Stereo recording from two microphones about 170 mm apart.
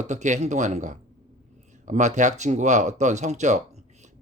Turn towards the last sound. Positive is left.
turn(degrees=-45)  # may be behind; listen again after turning